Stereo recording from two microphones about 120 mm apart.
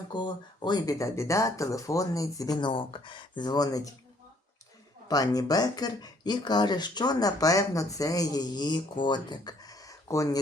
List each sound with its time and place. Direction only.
0.1 s speech: 40° left (ahead or behind)
5.0 s speech: 30° left (ahead or behind)